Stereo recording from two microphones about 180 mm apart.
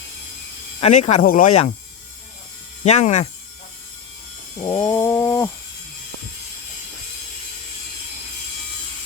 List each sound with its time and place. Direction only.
0.8 s speech: 35° left (ahead or behind)
2.8 s speech: 40° left (ahead or behind)
4.5 s a sound: 20° left (ahead or behind)